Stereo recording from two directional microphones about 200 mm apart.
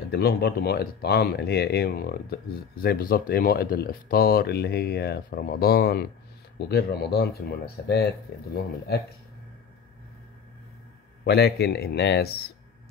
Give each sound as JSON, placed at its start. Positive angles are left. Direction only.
{"t": 0.1, "sound": "speech", "side_deg": 50}
{"t": 11.2, "sound": "speech", "side_deg": 55}